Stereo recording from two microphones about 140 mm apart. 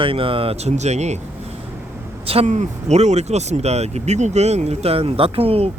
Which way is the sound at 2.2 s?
45° right (ahead or behind).